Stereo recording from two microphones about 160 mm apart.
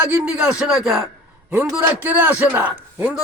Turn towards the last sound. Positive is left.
turn(degrees=-10)  # may be behind; listen again after turning